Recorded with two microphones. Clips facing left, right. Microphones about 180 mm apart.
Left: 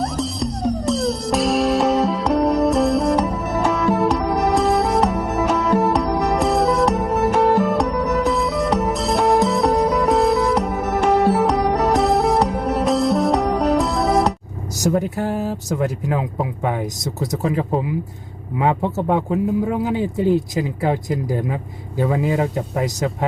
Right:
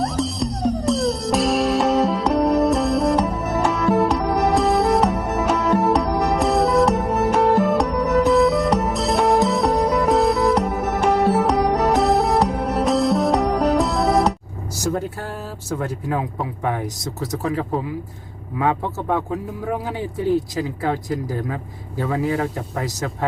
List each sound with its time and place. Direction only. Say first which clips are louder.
0.0 s music: even; centre (ahead or behind)
15.8 s speech: left 1 dB; 20° left (ahead or behind)